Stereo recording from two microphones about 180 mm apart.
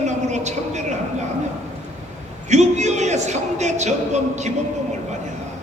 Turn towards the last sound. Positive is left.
turn(degrees=-40)  # may be behind; listen again after turning